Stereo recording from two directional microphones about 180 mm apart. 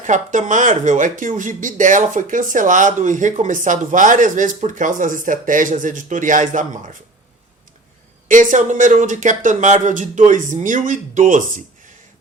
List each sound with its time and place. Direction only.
0.0 s speech: 45° right (ahead or behind)
8.3 s speech: 45° right (ahead or behind)